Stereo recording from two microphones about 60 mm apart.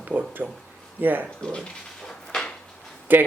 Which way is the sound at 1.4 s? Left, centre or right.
Centre.